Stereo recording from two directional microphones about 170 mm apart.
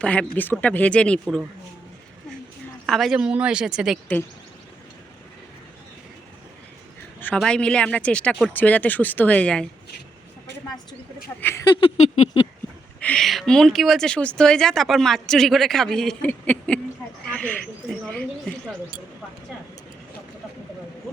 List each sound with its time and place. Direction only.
0.0 s speech: 5° left (ahead or behind)
2.8 s speech: centre (ahead or behind)
7.3 s speech: 5° left (ahead or behind)
11.3 s speech: 10° left (ahead or behind)
11.6 s a sound: 25° left (ahead or behind)
11.9 s a sound: 40° left (ahead or behind)
13.0 s speech: 5° left (ahead or behind)